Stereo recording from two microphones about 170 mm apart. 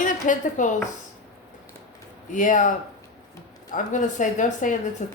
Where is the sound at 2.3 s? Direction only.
50° left (ahead or behind).